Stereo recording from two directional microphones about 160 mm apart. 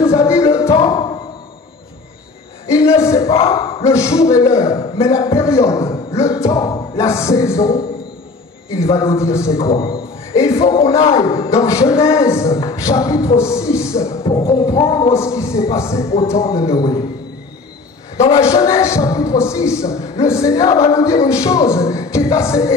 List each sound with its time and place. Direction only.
0.0 s music: 20° left (ahead or behind)
2.7 s a sound: 20° left (ahead or behind)
3.3 s speech: 35° left (ahead or behind)
3.8 s speech: 20° left (ahead or behind)
4.7 s a man's voice: 40° left (ahead or behind)
5.1 s a man's voice: 20° left (ahead or behind)
9.7 s speech: 35° left (ahead or behind)
11.5 s speech: 20° left (ahead or behind)
14.8 s speech: 35° left (ahead or behind)
15.1 s a man's voice: 15° left (ahead or behind)
18.6 s speech: 20° left (ahead or behind)